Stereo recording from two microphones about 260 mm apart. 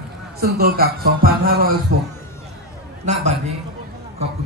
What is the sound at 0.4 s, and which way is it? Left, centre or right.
Speech, right.